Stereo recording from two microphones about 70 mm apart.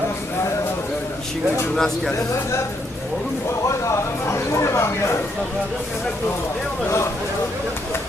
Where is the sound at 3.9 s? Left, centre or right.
Left.